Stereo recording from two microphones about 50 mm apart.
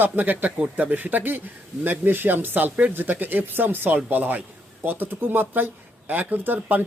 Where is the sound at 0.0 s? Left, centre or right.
Right.